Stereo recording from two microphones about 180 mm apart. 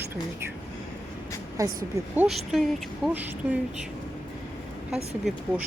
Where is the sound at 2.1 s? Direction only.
10° right (ahead or behind).